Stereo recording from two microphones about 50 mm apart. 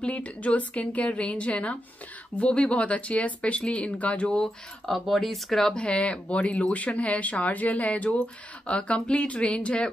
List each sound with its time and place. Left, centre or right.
0.0 s speech: left
4.3 s speech: centre
4.9 s speech: centre
5.8 s speech: left